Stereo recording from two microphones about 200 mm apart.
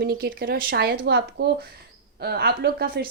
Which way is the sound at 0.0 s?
50° right (ahead or behind).